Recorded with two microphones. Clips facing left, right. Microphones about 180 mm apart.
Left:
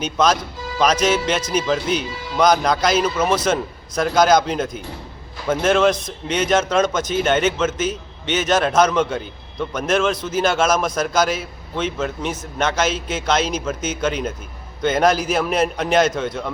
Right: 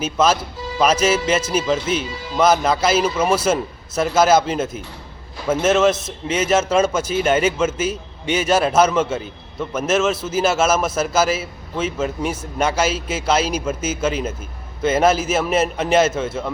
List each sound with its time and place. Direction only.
0.0 s a man's voice: 5° right (ahead or behind)